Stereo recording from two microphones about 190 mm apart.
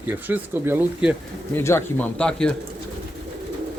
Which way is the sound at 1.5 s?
15° left (ahead or behind).